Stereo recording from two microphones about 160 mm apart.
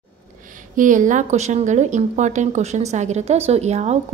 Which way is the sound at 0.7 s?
55° right (ahead or behind).